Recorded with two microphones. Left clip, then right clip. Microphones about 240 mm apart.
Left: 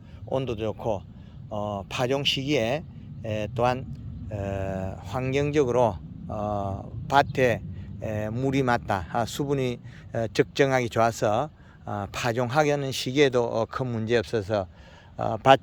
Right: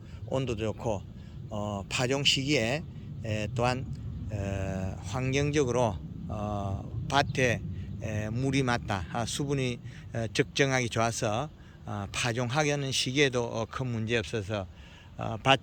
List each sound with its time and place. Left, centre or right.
0.3 s a man's voice: centre